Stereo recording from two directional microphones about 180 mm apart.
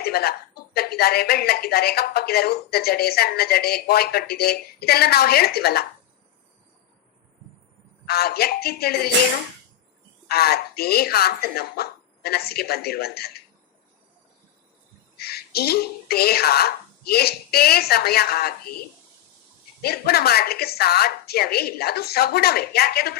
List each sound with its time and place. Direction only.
0.0 s speech: 60° left (ahead or behind)
8.0 s speech: 60° left (ahead or behind)
10.2 s speech: 60° left (ahead or behind)
15.2 s speech: 60° left (ahead or behind)
19.8 s speech: 60° left (ahead or behind)